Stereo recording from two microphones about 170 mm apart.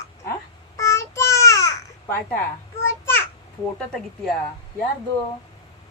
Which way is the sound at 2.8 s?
15° left (ahead or behind).